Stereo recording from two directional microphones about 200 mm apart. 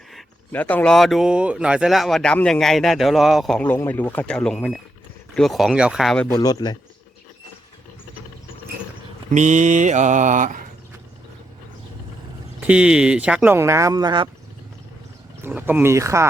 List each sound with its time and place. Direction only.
0.1 s speech: 5° left (ahead or behind)
6.3 s speech: 20° left (ahead or behind)
9.3 s mantra: 40° right (ahead or behind)
12.5 s speech: 5° right (ahead or behind); by 14.3 s 20° right (ahead or behind)
15.4 s speech: 10° right (ahead or behind)